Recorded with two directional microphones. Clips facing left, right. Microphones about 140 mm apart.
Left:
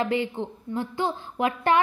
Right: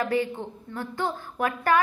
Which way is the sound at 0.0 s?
20° left (ahead or behind).